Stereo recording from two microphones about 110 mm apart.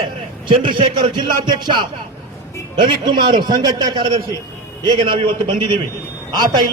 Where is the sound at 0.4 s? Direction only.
50° right (ahead or behind).